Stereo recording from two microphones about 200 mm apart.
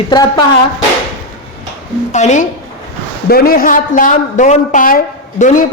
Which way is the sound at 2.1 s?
35° left (ahead or behind).